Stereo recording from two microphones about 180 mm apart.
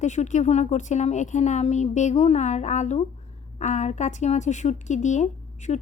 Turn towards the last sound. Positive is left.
turn(degrees=40)  # may be behind; listen again after turning